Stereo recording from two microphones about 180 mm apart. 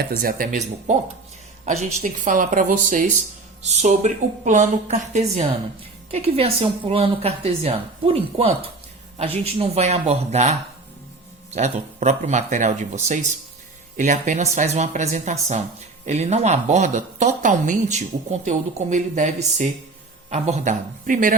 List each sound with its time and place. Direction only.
0.0 s speech: 55° right (ahead or behind)
3.6 s speech: 40° right (ahead or behind)